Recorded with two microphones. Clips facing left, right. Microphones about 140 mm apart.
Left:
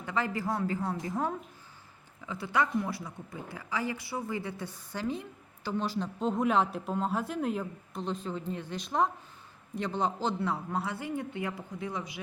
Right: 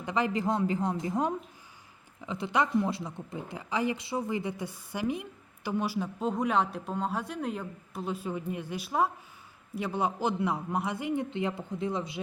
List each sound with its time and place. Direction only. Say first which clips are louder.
0.0 s a woman's voice: right 3 dB; 20° right (ahead or behind)